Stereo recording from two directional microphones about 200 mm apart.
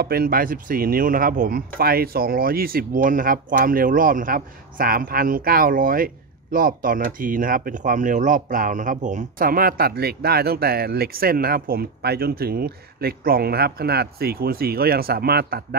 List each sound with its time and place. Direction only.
0.0 s speech: 50° right (ahead or behind)